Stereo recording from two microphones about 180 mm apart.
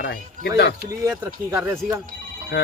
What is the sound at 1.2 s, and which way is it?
Speech, 15° right (ahead or behind).